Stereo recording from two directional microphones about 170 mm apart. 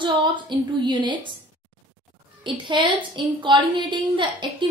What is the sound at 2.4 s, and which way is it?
A woman's voice, 30° right (ahead or behind).